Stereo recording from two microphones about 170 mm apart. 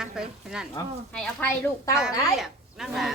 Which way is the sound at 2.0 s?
Centre (ahead or behind).